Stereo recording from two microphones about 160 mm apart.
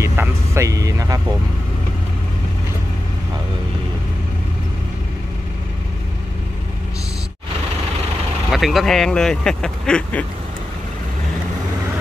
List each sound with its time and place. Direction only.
0.0 s vehicle: 15° right (ahead or behind)
8.5 s speech: centre (ahead or behind)